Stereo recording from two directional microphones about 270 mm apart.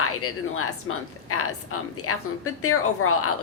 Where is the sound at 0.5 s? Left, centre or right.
Left.